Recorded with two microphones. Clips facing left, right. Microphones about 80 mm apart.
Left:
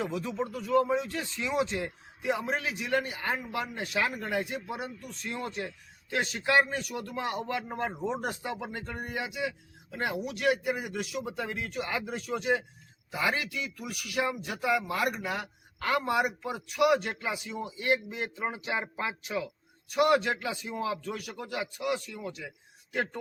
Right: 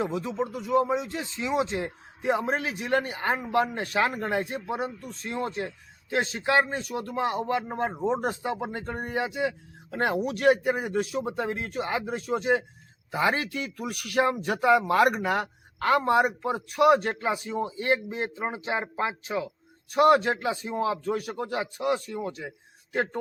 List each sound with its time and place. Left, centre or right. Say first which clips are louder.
0.0 s a man's voice: right 4 dB; right
14.8 s a man's voice: right 8 dB; right